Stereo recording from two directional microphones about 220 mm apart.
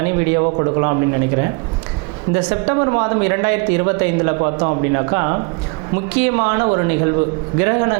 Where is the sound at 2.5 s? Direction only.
25° right (ahead or behind).